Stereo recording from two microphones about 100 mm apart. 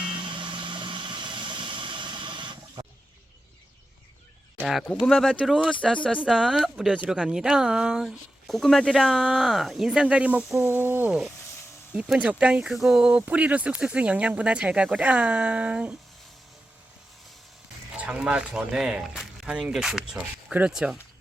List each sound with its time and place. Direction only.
0.0 s vehicle: 55° right (ahead or behind)
4.6 s speech: centre (ahead or behind)
5.8 s speech: 10° left (ahead or behind)
6.2 s speech: 5° right (ahead or behind)
10.7 s a sound: 20° right (ahead or behind)
11.9 s speech: 5° right (ahead or behind)
18.0 s speech: 10° right (ahead or behind)
20.5 s speech: 15° right (ahead or behind)
20.7 s speech: 5° right (ahead or behind)